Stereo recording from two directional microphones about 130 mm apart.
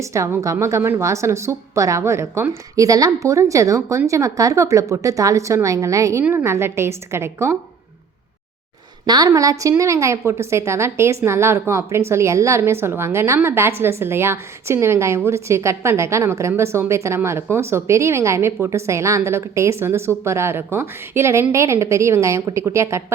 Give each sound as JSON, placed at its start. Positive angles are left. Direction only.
{"t": 0.0, "sound": "a woman's voice", "side_deg": -20}
{"t": 9.0, "sound": "a woman's voice", "side_deg": -30}